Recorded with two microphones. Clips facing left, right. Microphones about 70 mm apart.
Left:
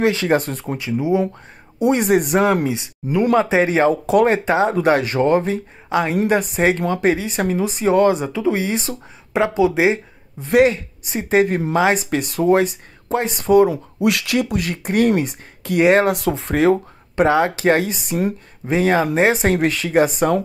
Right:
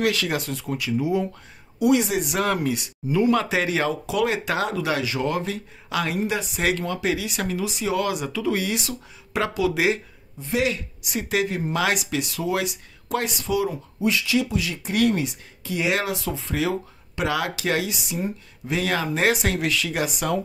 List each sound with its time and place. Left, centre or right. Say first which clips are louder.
0.0 s speech: left 7 dB; left
0.7 s speech: left 5 dB; left
2.0 s speech: left 9 dB; left
2.4 s speech: left 6 dB; centre
4.0 s speech: left 8 dB; left
4.5 s speech: left 8 dB; left
5.3 s speech: left 9 dB; left
6.2 s speech: left 7 dB; left
10.4 s speech: left 10 dB; left
10.7 s speech: left 4 dB; left
13.4 s speech: left 15 dB; left
13.7 s speech: left 6 dB; left